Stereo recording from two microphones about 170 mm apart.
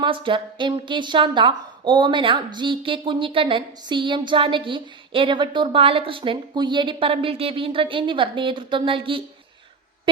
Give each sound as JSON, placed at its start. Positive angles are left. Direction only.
{"t": 0.0, "sound": "speech", "side_deg": -30}